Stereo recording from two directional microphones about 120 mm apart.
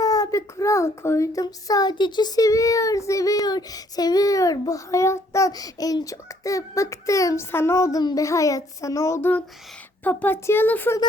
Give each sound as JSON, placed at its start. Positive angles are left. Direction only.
{"t": 0.0, "sound": "a child's voice", "side_deg": 30}
{"t": 10.0, "sound": "a child's voice", "side_deg": 15}